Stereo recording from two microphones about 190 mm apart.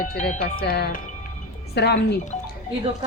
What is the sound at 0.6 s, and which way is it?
Speech, 55° left (ahead or behind).